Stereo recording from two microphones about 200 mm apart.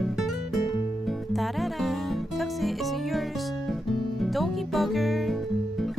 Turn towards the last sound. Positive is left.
turn(degrees=0)  # may be behind; listen again after turning